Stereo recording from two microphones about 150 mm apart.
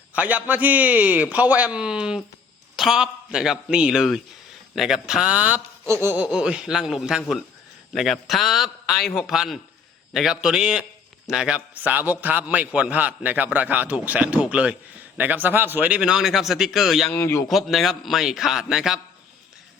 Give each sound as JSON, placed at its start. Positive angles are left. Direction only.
{"t": 0.1, "sound": "a man's voice", "side_deg": -10}
{"t": 6.2, "sound": "a man's voice", "side_deg": -5}
{"t": 17.1, "sound": "a man's voice", "side_deg": 15}
{"t": 17.5, "sound": "speech", "side_deg": 0}